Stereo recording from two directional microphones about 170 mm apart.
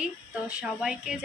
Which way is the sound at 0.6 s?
5° right (ahead or behind).